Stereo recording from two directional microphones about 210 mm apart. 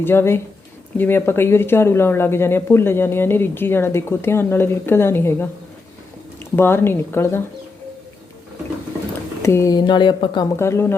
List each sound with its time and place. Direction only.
0.0 s speech: 10° left (ahead or behind)
9.4 s speech: 15° left (ahead or behind)